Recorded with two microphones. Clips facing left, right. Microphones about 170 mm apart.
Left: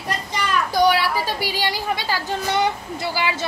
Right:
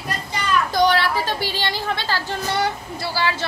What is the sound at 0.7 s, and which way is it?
A woman's voice, 10° left (ahead or behind).